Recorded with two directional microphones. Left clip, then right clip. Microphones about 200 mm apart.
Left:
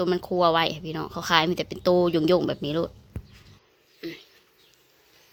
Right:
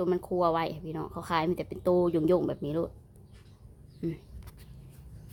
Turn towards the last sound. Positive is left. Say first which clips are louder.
# even
turn(degrees=-5)  # may be behind; listen again after turning